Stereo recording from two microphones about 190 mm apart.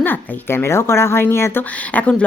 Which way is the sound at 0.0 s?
10° left (ahead or behind).